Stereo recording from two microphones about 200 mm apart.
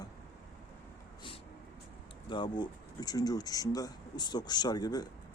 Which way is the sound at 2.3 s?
20° left (ahead or behind).